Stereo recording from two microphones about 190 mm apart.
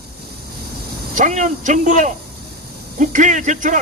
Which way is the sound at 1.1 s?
40° right (ahead or behind).